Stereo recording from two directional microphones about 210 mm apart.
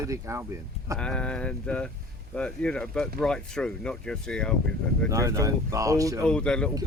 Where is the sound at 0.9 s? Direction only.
5° left (ahead or behind).